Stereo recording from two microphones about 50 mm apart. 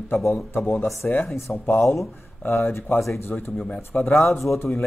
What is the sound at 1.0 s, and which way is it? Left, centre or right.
Speech, left.